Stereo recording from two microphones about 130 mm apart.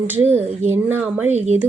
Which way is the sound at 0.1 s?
15° right (ahead or behind).